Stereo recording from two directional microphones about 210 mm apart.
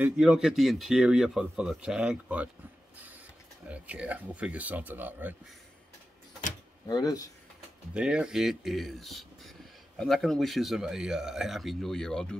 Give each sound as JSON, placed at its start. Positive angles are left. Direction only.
{"t": 0.0, "sound": "speech", "side_deg": -5}
{"t": 3.6, "sound": "speech", "side_deg": -5}
{"t": 6.9, "sound": "speech", "side_deg": 20}
{"t": 7.9, "sound": "speech", "side_deg": -5}